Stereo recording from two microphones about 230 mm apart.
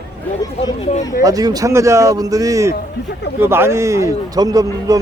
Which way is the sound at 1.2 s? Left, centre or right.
Centre.